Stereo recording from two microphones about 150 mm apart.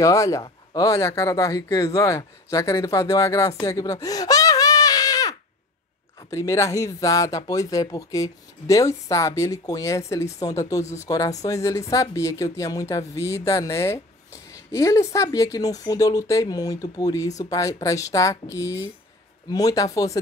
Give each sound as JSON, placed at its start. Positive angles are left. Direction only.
{"t": 0.0, "sound": "speech", "side_deg": 20}
{"t": 3.6, "sound": "a sound", "side_deg": 25}
{"t": 6.3, "sound": "speech", "side_deg": 20}